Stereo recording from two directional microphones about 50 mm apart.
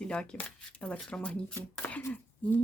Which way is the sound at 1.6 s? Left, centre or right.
Left.